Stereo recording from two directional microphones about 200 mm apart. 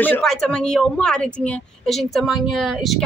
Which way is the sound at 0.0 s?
5° left (ahead or behind).